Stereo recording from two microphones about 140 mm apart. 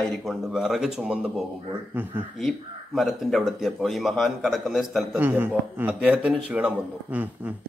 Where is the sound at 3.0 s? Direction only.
Centre (ahead or behind).